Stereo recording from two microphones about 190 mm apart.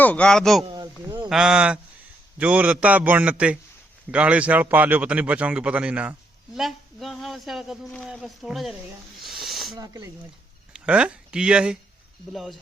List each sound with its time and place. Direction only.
0.0 s speech: 5° left (ahead or behind)
0.6 s a sound: 20° right (ahead or behind)
1.3 s speech: 5° right (ahead or behind)
9.2 s snake: centre (ahead or behind)
9.7 s speech: 20° right (ahead or behind)
10.7 s speech: 5° right (ahead or behind)